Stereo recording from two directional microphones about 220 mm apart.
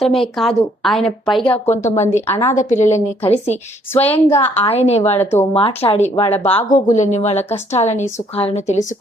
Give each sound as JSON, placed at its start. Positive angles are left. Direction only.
{"t": 0.0, "sound": "a woman's voice", "side_deg": 0}
{"t": 1.7, "sound": "a woman's voice", "side_deg": 30}
{"t": 2.1, "sound": "a woman's voice", "side_deg": 10}
{"t": 2.6, "sound": "a woman's voice", "side_deg": 35}
{"t": 4.0, "sound": "a woman's voice", "side_deg": 10}
{"t": 4.6, "sound": "speech", "side_deg": 30}
{"t": 5.2, "sound": "a woman's voice", "side_deg": 10}
{"t": 5.5, "sound": "a woman's voice", "side_deg": 25}